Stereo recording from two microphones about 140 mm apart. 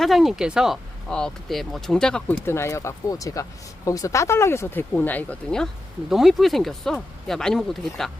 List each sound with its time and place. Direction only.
0.0 s speech: centre (ahead or behind)
2.5 s speech: 20° left (ahead or behind); by 8.1 s centre (ahead or behind)